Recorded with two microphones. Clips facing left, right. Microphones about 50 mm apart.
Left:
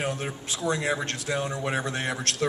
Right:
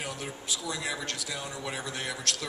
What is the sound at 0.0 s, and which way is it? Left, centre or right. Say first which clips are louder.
A woman's voice: left 7 dB; left.